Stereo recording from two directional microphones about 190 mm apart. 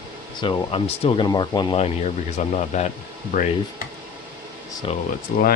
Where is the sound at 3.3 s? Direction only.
45° left (ahead or behind).